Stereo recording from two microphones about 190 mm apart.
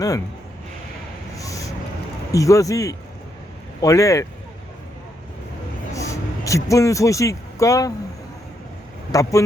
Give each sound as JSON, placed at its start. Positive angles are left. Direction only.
{"t": 1.4, "sound": "vehicle", "side_deg": 15}
{"t": 2.3, "sound": "speech", "side_deg": 15}
{"t": 5.9, "sound": "speech", "side_deg": 15}
{"t": 9.1, "sound": "speech", "side_deg": 20}